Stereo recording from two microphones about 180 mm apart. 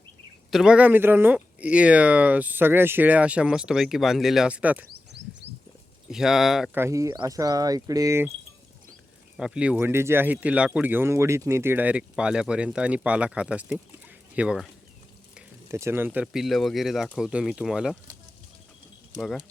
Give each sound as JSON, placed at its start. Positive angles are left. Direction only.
{"t": 0.5, "sound": "speech", "side_deg": -5}
{"t": 6.1, "sound": "speech", "side_deg": -5}
{"t": 6.7, "sound": "speech", "side_deg": -15}
{"t": 9.4, "sound": "speech", "side_deg": -5}